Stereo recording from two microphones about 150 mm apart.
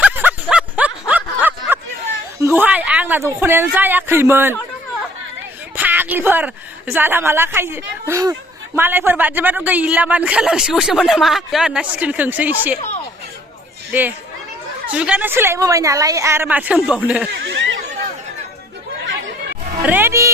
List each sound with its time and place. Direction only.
0.0 s a sound: 10° right (ahead or behind)
2.4 s speech: 15° right (ahead or behind)
5.7 s a woman's voice: 10° right (ahead or behind)
14.8 s a woman's voice: 10° right (ahead or behind)
19.8 s a woman's voice: 15° right (ahead or behind)